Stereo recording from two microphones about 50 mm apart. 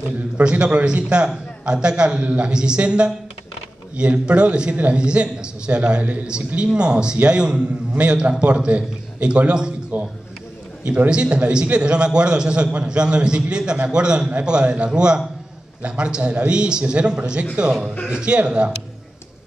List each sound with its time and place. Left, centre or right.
0.4 s a man's voice: right
11.1 s a man's voice: right